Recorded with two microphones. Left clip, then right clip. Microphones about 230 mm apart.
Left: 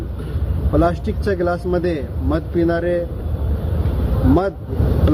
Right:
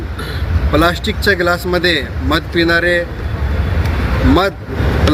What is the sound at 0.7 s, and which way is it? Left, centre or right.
Speech, centre.